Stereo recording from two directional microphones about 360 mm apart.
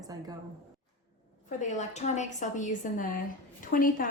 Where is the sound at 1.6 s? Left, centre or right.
Centre.